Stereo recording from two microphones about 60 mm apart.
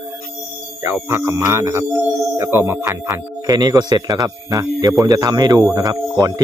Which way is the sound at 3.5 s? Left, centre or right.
Right.